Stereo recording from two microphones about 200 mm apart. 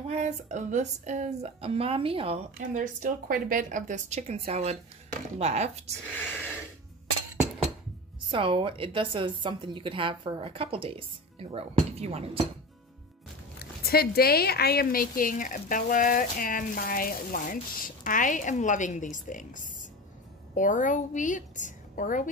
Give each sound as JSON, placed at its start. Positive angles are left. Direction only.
{"t": 0.1, "sound": "speech", "side_deg": -35}
{"t": 8.3, "sound": "a woman's voice", "side_deg": -25}
{"t": 13.6, "sound": "a woman's voice", "side_deg": 50}